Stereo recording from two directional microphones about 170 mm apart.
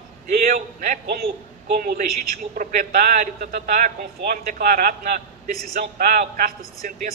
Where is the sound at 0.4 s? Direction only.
55° right (ahead or behind).